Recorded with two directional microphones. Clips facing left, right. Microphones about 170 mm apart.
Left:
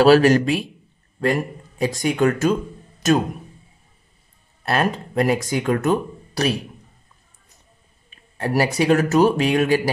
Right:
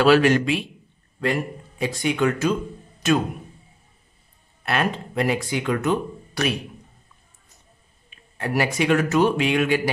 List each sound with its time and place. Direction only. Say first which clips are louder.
0.0 s speech: left 3 dB; 40° left (ahead or behind)
4.6 s speech: left 3 dB; 40° left (ahead or behind)
8.4 s speech: left 3 dB; 35° left (ahead or behind)